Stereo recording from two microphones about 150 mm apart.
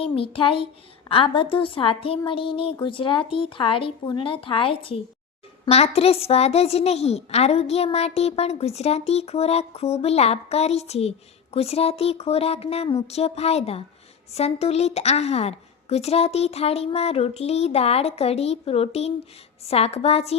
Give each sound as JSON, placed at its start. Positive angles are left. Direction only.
{"t": 0.0, "sound": "a woman's voice", "side_deg": 35}